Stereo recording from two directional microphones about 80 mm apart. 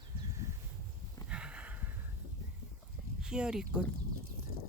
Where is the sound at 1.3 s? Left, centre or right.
Centre.